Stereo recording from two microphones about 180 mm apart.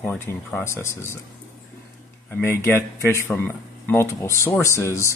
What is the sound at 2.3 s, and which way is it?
Speech, 10° left (ahead or behind).